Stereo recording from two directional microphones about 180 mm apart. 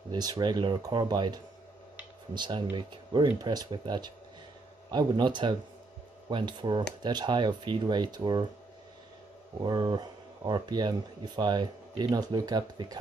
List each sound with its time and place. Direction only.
0.1 s speech: 20° right (ahead or behind)
9.6 s speech: 20° right (ahead or behind)